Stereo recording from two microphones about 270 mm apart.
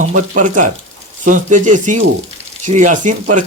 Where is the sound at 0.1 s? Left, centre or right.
Right.